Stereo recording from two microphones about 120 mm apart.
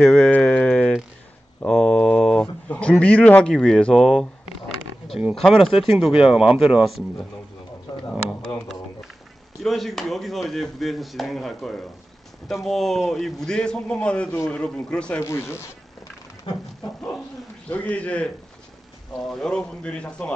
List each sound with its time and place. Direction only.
0.0 s a sound: 10° left (ahead or behind)
5.3 s speech: centre (ahead or behind)
8.1 s a sound: 5° left (ahead or behind)
9.6 s speech: centre (ahead or behind)
15.1 s speech: 20° left (ahead or behind)
17.6 s a man's voice: 10° left (ahead or behind)